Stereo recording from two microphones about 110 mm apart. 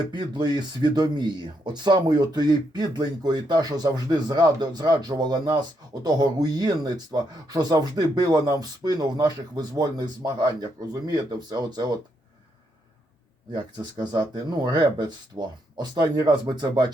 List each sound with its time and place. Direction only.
0.1 s speech: 40° right (ahead or behind)
13.5 s speech: 40° right (ahead or behind)